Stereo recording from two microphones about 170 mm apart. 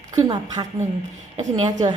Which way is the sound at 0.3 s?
20° right (ahead or behind).